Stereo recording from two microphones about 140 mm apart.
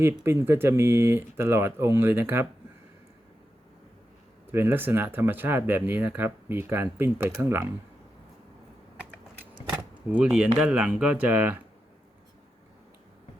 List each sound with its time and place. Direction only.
0.3 s speech: 15° right (ahead or behind)
4.5 s speech: 15° right (ahead or behind)
9.7 s speech: 10° right (ahead or behind)